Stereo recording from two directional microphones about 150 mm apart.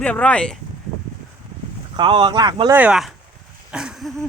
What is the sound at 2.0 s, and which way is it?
Speech, 35° right (ahead or behind).